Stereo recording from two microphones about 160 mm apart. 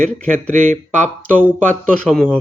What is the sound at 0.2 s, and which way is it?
Speech, 10° left (ahead or behind).